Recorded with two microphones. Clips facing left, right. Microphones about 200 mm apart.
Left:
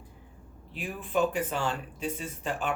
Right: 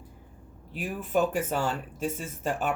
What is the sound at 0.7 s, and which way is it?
Speech, 45° right (ahead or behind).